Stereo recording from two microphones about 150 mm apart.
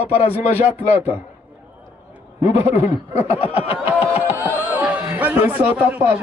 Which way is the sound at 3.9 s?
15° right (ahead or behind).